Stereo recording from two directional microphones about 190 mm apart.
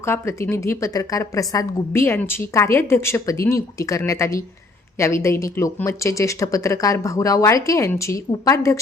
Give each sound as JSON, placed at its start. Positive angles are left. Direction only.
{"t": 0.0, "sound": "a woman's voice", "side_deg": 15}